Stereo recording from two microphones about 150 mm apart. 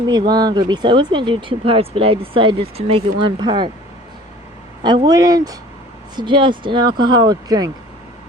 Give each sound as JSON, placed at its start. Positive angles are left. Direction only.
{"t": 0.1, "sound": "speech", "side_deg": -25}
{"t": 4.8, "sound": "speech", "side_deg": -30}